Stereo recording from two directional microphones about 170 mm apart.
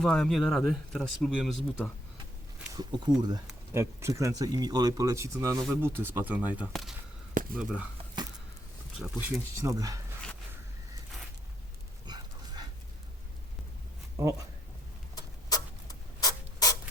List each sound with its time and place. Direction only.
0.0 s speech: 5° left (ahead or behind)
2.7 s speech: 25° right (ahead or behind); by 7.9 s 5° right (ahead or behind)
8.2 s a sound: 25° right (ahead or behind)
9.0 s speech: centre (ahead or behind)
9.6 s speech: 20° right (ahead or behind)
12.0 s dog: 25° right (ahead or behind)
14.2 s speech: 15° right (ahead or behind)
15.1 s a sound: 20° left (ahead or behind)